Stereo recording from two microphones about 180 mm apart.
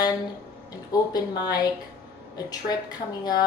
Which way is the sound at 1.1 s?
20° left (ahead or behind).